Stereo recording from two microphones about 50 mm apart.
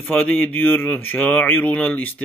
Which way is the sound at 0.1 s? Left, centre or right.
Left.